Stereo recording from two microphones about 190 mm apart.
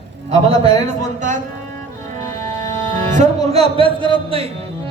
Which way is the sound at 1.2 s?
40° right (ahead or behind).